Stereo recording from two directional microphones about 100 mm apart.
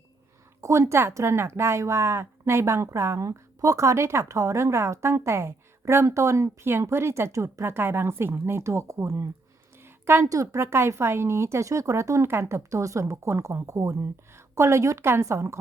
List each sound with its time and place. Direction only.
0.6 s speech: 30° right (ahead or behind)